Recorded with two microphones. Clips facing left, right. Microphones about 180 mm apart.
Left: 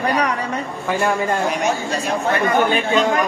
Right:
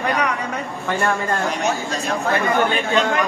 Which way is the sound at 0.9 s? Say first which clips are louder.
Left 2 dB; 10° left (ahead or behind).